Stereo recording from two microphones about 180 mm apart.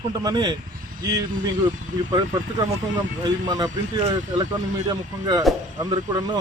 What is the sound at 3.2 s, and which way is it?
Speech, 20° right (ahead or behind).